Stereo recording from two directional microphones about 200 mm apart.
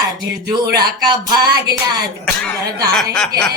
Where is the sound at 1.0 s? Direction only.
20° right (ahead or behind).